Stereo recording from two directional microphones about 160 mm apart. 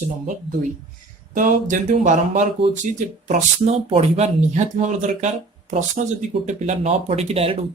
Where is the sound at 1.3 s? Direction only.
55° right (ahead or behind).